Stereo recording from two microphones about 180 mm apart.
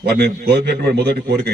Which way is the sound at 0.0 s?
65° right (ahead or behind).